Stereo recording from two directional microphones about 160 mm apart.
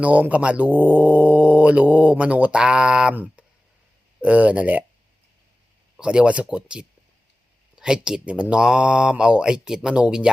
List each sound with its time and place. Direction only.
0.0 s speech: 10° right (ahead or behind)
6.0 s speech: 5° right (ahead or behind)